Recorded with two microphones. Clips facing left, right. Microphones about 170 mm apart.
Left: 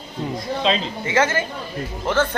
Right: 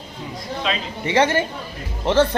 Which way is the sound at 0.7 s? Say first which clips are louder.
Left 5 dB; 25° left (ahead or behind).